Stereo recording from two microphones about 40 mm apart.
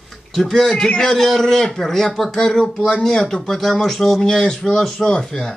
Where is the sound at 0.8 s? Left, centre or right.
Centre.